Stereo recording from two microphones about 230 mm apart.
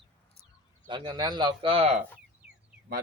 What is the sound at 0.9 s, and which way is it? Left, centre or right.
Speech, right.